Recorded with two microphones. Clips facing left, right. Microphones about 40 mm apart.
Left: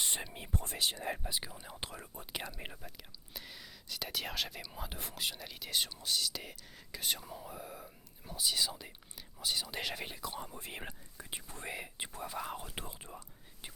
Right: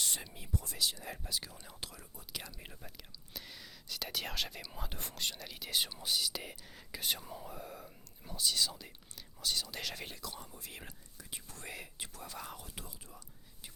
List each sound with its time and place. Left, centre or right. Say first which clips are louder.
0.0 s speech: left 2 dB; left
1.2 s speech: left 1 dB; left
1.8 s speech: left 4 dB; left
2.8 s speech: left 1 dB; centre
12.5 s speech: left 6 dB; left